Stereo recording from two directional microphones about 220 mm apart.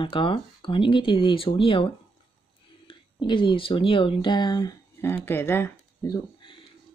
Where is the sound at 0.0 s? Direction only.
20° left (ahead or behind).